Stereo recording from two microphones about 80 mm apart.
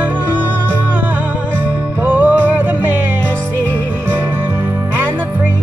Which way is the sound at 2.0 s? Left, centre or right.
Right.